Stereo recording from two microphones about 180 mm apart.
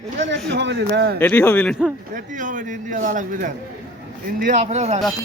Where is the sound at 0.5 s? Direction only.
75° right (ahead or behind).